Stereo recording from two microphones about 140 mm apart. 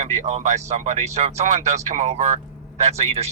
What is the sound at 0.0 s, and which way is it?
A man's voice, 55° right (ahead or behind).